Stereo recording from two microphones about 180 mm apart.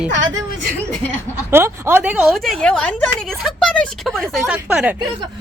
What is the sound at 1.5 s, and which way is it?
Speech, 15° right (ahead or behind).